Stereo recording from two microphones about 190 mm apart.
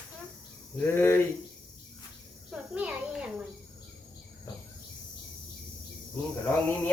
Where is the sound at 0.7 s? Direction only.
10° left (ahead or behind).